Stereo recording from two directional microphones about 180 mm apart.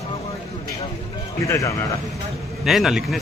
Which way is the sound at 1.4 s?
15° left (ahead or behind).